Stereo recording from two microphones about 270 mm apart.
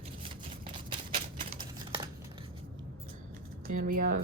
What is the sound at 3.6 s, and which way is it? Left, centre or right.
Speech, right.